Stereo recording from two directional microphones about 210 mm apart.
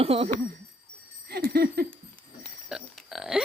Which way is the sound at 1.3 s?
50° right (ahead or behind).